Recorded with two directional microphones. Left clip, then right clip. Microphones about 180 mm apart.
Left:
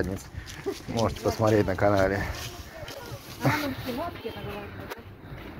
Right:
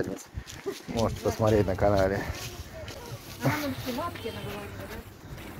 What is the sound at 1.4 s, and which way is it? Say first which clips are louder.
Speech: left 1 dB; 5° right (ahead or behind).